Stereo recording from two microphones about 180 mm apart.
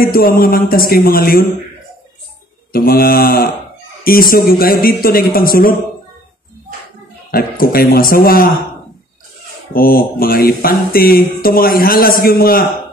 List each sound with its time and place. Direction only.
0.0 s mantra: 55° left (ahead or behind)
2.7 s mantra: 55° left (ahead or behind)
4.0 s a man's voice: 55° left (ahead or behind)
7.2 s a man's voice: 55° left (ahead or behind)
9.8 s mantra: 55° left (ahead or behind)